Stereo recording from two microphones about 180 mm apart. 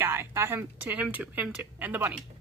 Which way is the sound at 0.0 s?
15° right (ahead or behind).